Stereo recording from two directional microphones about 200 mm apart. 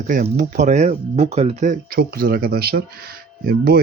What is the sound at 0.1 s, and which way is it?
Speech, 40° right (ahead or behind).